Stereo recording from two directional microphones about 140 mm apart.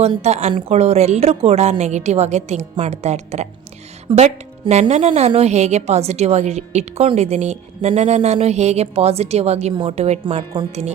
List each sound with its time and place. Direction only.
0.2 s a woman's voice: 50° right (ahead or behind)
4.1 s speech: 35° right (ahead or behind)
4.7 s a woman's voice: 55° right (ahead or behind); by 10.7 s 35° right (ahead or behind)